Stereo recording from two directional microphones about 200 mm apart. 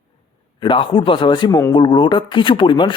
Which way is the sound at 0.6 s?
25° left (ahead or behind).